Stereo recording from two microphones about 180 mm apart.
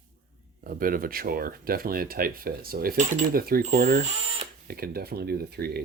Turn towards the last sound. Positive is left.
turn(degrees=-60)  # may be behind; listen again after turning